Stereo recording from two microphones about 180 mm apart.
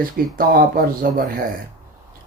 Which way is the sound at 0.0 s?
55° right (ahead or behind).